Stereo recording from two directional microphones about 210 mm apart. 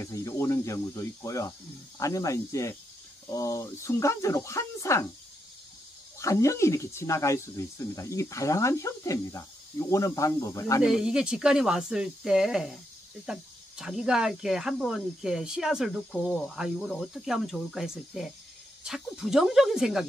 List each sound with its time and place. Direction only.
0.0 s speech: 15° left (ahead or behind)
6.1 s speech: 15° left (ahead or behind)
10.8 s speech: 5° right (ahead or behind)